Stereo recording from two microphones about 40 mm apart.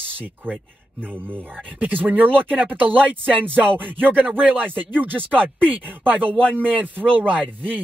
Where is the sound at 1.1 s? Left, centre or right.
Right.